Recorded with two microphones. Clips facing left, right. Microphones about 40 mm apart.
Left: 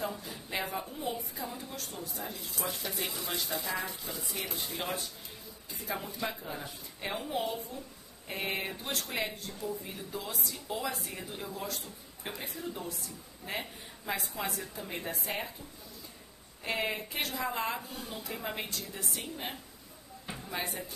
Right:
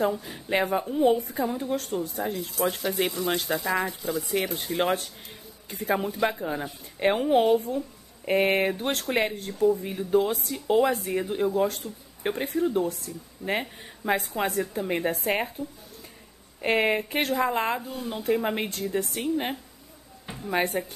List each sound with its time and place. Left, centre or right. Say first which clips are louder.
0.2 s a woman's voice: right 10 dB; right
2.3 s speech: right 11 dB; centre
5.7 s speech: right 11 dB; right
7.0 s a woman's voice: right 13 dB; right
15.0 s a woman's voice: right 10 dB; right
16.6 s speech: right 10 dB; right
17.7 s speech: right 8 dB; centre
18.2 s speech: right 14 dB; right
20.5 s a woman's voice: right 12 dB; right